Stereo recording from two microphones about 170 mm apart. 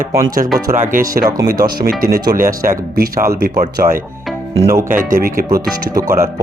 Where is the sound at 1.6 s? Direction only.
60° right (ahead or behind).